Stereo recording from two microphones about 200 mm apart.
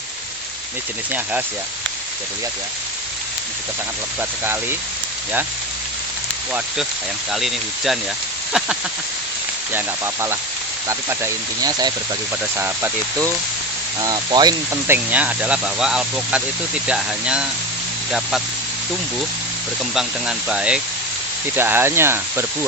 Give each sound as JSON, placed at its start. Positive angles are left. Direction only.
{"t": 1.1, "sound": "speech", "side_deg": -10}
{"t": 4.2, "sound": "speech", "side_deg": -10}
{"t": 7.3, "sound": "speech", "side_deg": 0}
{"t": 14.0, "sound": "speech", "side_deg": -20}
{"t": 14.8, "sound": "speech", "side_deg": -10}
{"t": 19.9, "sound": "speech", "side_deg": -5}